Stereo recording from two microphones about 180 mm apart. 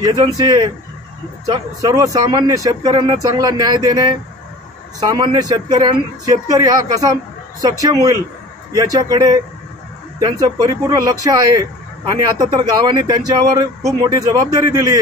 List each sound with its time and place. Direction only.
0.0 s speech: 20° right (ahead or behind)